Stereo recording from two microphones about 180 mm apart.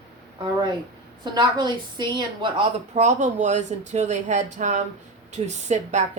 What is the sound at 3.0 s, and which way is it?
Speech, 40° right (ahead or behind).